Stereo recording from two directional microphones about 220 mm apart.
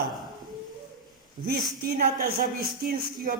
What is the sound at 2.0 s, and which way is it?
Speech, 45° right (ahead or behind).